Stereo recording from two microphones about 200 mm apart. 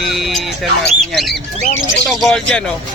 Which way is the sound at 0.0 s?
Centre (ahead or behind).